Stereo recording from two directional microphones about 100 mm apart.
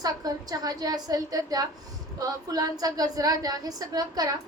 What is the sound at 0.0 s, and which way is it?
A woman's voice, 40° right (ahead or behind).